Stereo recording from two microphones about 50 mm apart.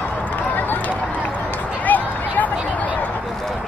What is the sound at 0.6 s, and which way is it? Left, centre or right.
Run, left.